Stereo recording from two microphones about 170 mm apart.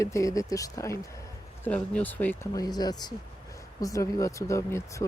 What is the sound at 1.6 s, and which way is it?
Speech, 10° left (ahead or behind).